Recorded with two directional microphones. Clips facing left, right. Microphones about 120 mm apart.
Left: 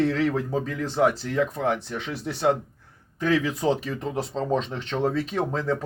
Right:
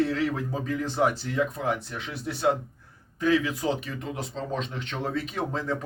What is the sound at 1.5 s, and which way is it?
Speech, 35° left (ahead or behind).